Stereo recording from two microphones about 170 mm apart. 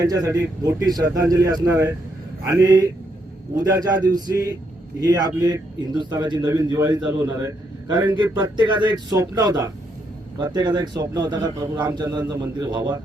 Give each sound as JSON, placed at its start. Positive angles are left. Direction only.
{"t": 0.0, "sound": "a man's voice", "side_deg": -20}